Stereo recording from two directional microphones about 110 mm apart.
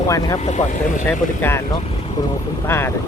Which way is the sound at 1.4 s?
20° left (ahead or behind).